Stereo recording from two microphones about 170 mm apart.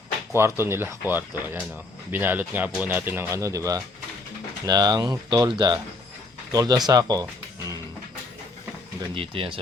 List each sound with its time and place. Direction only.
0.3 s speech: 15° right (ahead or behind)
9.1 s speech: 30° right (ahead or behind)